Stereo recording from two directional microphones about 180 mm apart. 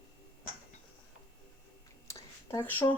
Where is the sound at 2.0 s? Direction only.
15° left (ahead or behind).